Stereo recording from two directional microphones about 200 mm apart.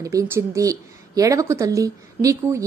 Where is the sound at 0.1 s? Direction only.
15° right (ahead or behind).